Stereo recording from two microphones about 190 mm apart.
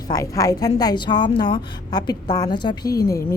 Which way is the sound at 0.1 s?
15° left (ahead or behind).